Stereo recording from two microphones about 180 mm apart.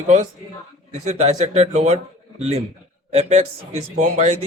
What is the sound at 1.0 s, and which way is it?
A man's voice, 40° right (ahead or behind).